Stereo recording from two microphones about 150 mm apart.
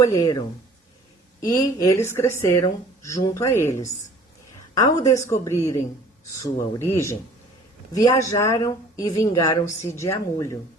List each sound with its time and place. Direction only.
0.0 s speech: 25° left (ahead or behind)
1.5 s speech: 25° left (ahead or behind)